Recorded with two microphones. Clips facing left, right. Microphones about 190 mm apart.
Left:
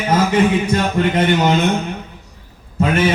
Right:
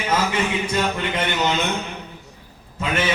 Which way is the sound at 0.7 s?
50° left (ahead or behind).